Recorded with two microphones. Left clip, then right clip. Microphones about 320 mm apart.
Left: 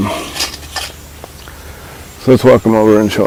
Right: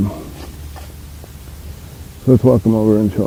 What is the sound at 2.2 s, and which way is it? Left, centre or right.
Speech, centre.